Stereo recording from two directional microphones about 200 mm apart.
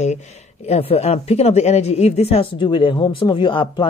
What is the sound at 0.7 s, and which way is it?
Speech, 30° left (ahead or behind).